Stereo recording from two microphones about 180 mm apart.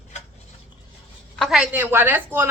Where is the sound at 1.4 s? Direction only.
Centre (ahead or behind).